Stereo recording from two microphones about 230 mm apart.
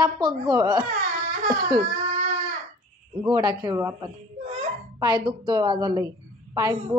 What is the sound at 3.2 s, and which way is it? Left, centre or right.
A woman's voice, centre.